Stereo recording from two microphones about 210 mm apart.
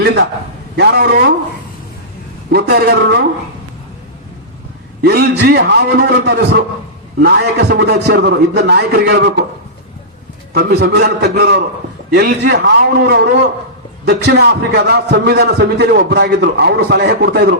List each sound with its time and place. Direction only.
0.0 s a man's voice: 50° right (ahead or behind)
2.5 s a man's voice: 50° right (ahead or behind)
5.0 s a man's voice: 50° right (ahead or behind)
10.5 s a man's voice: 50° right (ahead or behind)